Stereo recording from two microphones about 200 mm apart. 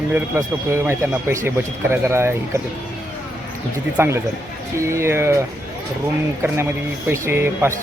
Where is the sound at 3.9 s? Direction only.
10° right (ahead or behind).